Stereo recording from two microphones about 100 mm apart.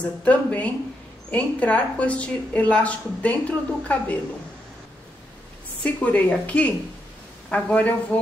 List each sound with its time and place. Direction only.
0.2 s a woman's voice: 15° left (ahead or behind)
5.8 s a woman's voice: 15° left (ahead or behind)